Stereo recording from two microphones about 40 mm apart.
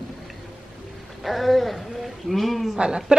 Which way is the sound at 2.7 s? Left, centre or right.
Right.